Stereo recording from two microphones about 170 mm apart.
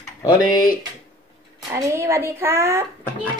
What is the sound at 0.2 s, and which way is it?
Speech, 25° left (ahead or behind).